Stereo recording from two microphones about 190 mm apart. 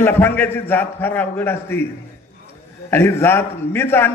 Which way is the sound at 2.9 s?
10° left (ahead or behind).